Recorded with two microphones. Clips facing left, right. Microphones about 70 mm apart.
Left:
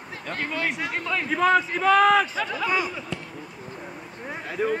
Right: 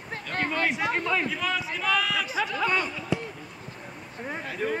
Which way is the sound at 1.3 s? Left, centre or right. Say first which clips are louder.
Left 9 dB; left.